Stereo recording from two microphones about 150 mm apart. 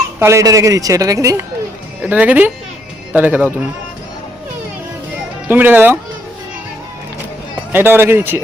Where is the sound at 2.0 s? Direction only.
10° right (ahead or behind).